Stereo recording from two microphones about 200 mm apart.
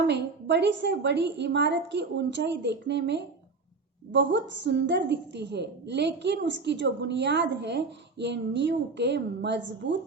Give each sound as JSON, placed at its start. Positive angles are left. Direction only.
{"t": 0.1, "sound": "a woman's voice", "side_deg": -60}